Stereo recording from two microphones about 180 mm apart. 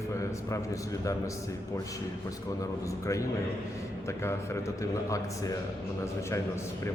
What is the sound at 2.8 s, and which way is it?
A man's voice, 15° left (ahead or behind).